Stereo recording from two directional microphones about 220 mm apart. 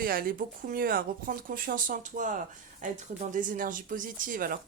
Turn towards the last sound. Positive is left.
turn(degrees=-40)  # may be behind; listen again after turning